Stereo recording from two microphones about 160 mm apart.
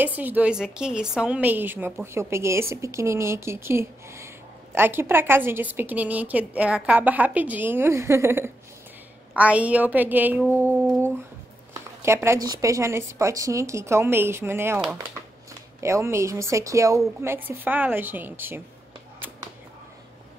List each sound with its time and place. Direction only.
0.0 s a woman's voice: 10° right (ahead or behind)
15.8 s a woman's voice: 15° right (ahead or behind)